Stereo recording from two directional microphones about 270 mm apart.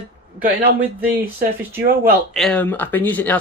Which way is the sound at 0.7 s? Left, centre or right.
Centre.